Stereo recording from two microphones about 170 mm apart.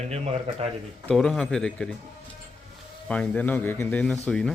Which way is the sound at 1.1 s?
5° left (ahead or behind).